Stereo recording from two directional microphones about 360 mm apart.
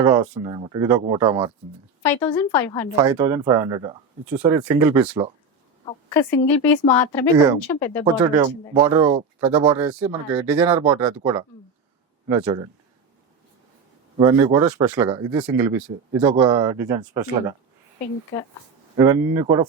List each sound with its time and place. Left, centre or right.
0.0 s speech: centre
2.0 s speech: centre
2.9 s speech: centre
5.8 s speech: centre
8.0 s speech: centre
9.7 s speech: centre
14.2 s speech: centre
18.9 s speech: centre